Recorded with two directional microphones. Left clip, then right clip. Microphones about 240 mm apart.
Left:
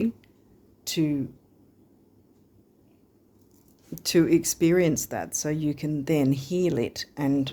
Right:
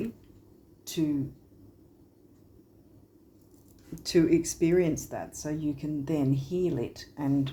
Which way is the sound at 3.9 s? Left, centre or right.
Left.